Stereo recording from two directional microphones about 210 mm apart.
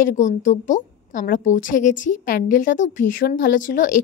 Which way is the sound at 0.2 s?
35° left (ahead or behind).